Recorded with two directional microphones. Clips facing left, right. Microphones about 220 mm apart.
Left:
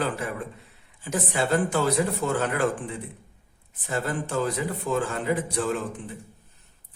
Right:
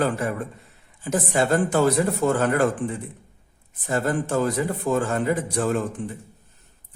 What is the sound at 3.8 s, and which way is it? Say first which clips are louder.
A man's voice: right 5 dB; 45° right (ahead or behind).